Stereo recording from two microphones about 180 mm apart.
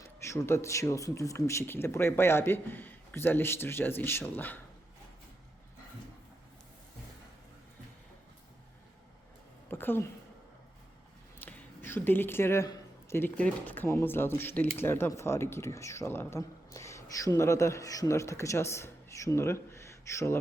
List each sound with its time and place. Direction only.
0.0 s speech: 15° left (ahead or behind)
9.6 s a sound: 10° left (ahead or behind)
11.3 s speech: 10° left (ahead or behind)